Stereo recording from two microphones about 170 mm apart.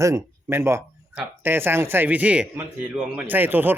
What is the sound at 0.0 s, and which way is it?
Speech, 20° right (ahead or behind).